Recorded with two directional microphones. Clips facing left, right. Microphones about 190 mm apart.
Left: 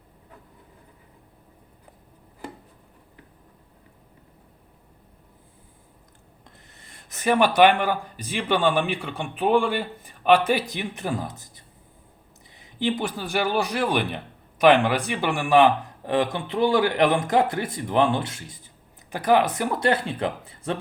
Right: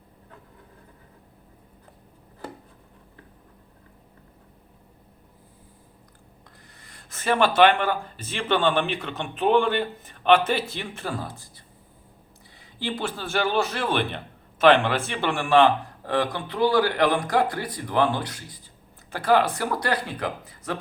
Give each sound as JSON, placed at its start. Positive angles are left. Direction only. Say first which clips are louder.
{"t": 6.7, "sound": "speech", "louder": "even", "side_deg": 25}